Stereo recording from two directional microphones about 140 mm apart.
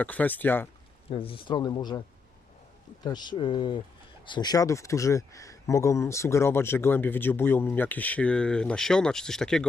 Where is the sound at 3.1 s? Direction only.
30° left (ahead or behind).